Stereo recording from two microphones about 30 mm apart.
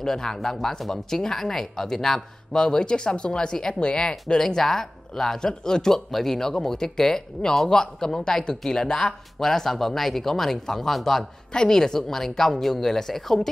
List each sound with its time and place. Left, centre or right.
0.0 s speech: centre
5.5 s speech: left
9.4 s speech: centre